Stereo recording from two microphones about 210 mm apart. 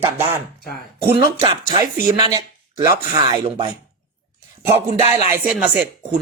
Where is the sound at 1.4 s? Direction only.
25° right (ahead or behind).